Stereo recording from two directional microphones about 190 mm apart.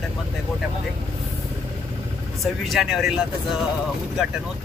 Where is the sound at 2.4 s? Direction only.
Centre (ahead or behind).